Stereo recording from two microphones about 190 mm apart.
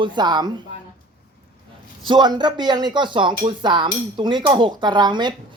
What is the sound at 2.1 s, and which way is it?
Speech, 20° right (ahead or behind).